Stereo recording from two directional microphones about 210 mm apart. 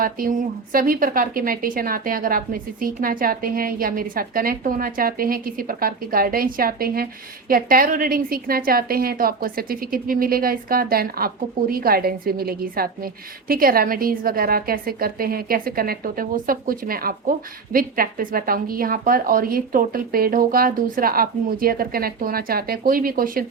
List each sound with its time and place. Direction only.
0.0 s a woman's voice: 40° right (ahead or behind)